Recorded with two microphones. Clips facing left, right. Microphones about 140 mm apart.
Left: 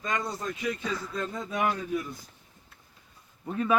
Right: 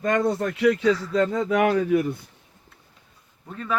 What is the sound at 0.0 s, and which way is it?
A man's voice, 55° right (ahead or behind).